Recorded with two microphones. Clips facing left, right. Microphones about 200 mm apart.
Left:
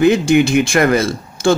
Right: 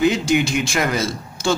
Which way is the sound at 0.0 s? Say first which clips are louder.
Left 6 dB; 55° left (ahead or behind).